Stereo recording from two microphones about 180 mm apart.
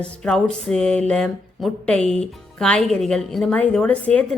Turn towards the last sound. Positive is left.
turn(degrees=10)  # may be behind; listen again after turning